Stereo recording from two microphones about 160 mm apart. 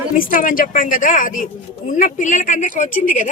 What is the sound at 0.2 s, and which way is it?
A woman's voice, 60° left (ahead or behind).